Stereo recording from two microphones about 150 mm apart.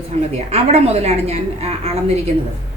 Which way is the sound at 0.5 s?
45° right (ahead or behind).